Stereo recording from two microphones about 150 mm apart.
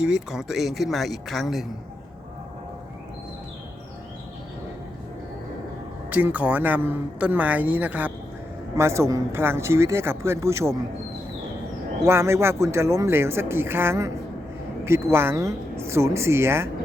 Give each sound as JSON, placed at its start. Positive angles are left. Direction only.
{"t": 0.0, "sound": "speech", "side_deg": -5}
{"t": 6.1, "sound": "speech", "side_deg": -10}
{"t": 12.0, "sound": "speech", "side_deg": -15}
{"t": 15.1, "sound": "speech", "side_deg": -15}